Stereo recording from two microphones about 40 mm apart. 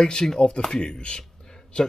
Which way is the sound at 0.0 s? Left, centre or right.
Centre.